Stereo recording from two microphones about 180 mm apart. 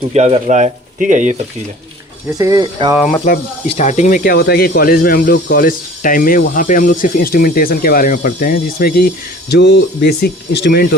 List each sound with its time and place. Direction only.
0.1 s speech: 35° right (ahead or behind)
2.4 s speech: 20° right (ahead or behind)
3.3 s speech: 45° left (ahead or behind); by 10.8 s 65° left (ahead or behind)